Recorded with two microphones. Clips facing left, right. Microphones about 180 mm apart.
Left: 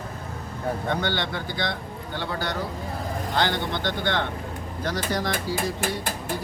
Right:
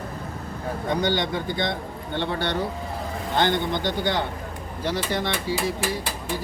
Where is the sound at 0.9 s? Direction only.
15° right (ahead or behind).